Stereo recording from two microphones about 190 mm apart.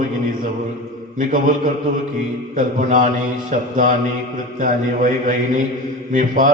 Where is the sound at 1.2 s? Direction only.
45° right (ahead or behind).